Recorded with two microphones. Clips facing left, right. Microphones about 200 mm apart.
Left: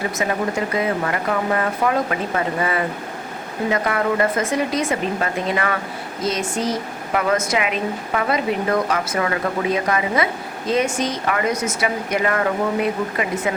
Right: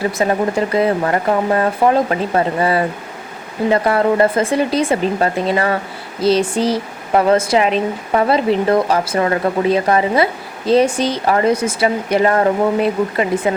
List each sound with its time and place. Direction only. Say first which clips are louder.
0.2 s speech: right 5 dB; 35° right (ahead or behind)